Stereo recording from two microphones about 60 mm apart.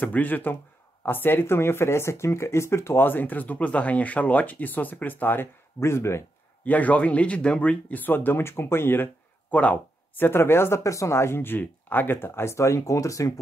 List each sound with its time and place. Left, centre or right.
0.0 s speech: left
5.8 s speech: left
6.6 s speech: left
9.5 s speech: left
10.1 s speech: left
10.8 s speech: left